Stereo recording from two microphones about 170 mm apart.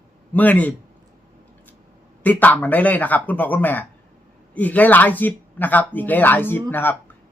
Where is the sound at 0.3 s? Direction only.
10° left (ahead or behind).